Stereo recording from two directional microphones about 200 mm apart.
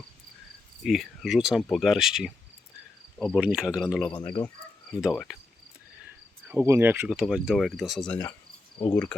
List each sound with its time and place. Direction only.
0.9 s speech: centre (ahead or behind)
4.1 s speech: 25° left (ahead or behind)
4.9 s speech: centre (ahead or behind)
6.5 s speech: 10° right (ahead or behind); by 9.1 s 5° left (ahead or behind)